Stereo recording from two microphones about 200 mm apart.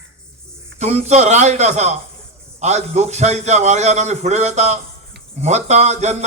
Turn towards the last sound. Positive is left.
turn(degrees=-35)  # may be behind; listen again after turning